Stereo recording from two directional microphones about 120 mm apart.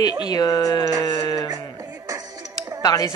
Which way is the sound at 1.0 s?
35° left (ahead or behind).